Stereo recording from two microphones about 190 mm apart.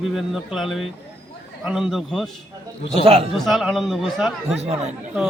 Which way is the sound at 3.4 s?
Centre (ahead or behind).